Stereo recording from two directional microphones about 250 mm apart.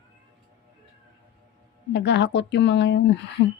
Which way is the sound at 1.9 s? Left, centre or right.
Left.